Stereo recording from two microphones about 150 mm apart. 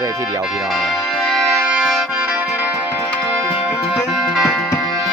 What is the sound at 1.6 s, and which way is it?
Accordion, 5° right (ahead or behind).